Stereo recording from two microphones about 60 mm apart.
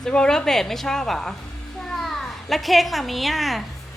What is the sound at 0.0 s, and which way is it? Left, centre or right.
A woman's voice, centre.